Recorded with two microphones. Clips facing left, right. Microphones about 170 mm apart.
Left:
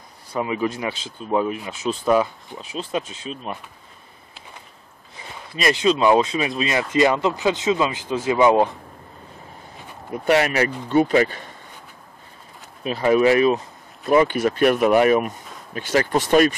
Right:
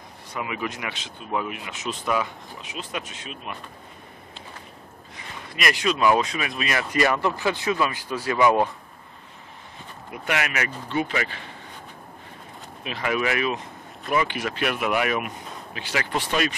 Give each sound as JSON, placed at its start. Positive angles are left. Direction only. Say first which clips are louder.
{"t": 0.3, "sound": "speech", "louder": "left 7 dB", "side_deg": 30}
{"t": 5.6, "sound": "speech", "louder": "left 5 dB", "side_deg": 25}
{"t": 10.1, "sound": "speech", "louder": "left 9 dB", "side_deg": 35}
{"t": 12.8, "sound": "speech", "louder": "left 9 dB", "side_deg": 35}